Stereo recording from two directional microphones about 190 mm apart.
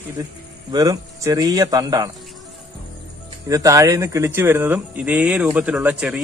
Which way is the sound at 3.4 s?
15° right (ahead or behind).